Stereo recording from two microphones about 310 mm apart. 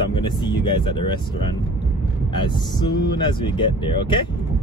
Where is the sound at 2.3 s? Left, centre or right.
Centre.